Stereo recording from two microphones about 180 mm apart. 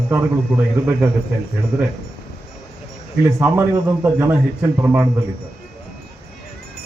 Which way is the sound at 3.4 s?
15° right (ahead or behind).